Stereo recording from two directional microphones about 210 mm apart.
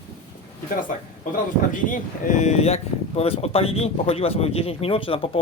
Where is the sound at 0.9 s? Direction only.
40° left (ahead or behind).